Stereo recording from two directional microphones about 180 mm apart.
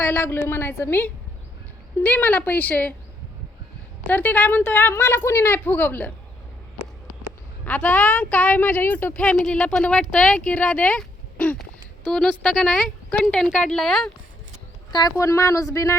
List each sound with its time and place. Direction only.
0.0 s speech: 10° left (ahead or behind)
4.1 s speech: 10° left (ahead or behind)
7.6 s speech: 10° left (ahead or behind)
14.9 s speech: 20° left (ahead or behind)